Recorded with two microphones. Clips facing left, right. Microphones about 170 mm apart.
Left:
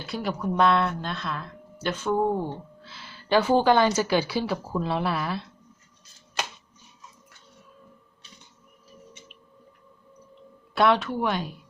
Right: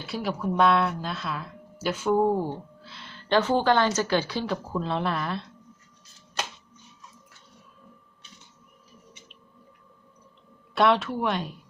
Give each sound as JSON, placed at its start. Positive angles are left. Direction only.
{"t": 0.0, "sound": "speech", "side_deg": 0}
{"t": 10.8, "sound": "speech", "side_deg": 0}